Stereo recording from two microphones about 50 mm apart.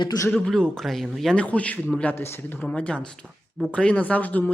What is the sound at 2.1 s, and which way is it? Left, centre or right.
Speech, left.